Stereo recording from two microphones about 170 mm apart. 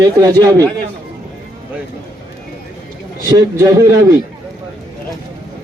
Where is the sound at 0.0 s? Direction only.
20° right (ahead or behind).